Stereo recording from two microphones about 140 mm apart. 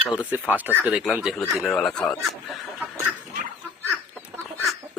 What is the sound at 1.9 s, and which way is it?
Speech, 5° left (ahead or behind).